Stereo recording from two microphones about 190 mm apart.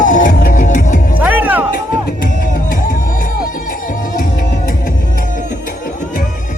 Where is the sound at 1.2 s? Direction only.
10° right (ahead or behind).